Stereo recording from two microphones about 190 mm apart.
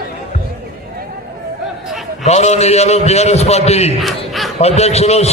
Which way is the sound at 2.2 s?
35° left (ahead or behind).